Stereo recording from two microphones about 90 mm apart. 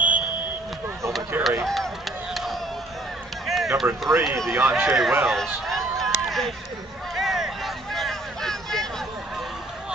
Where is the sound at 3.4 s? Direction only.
5° right (ahead or behind).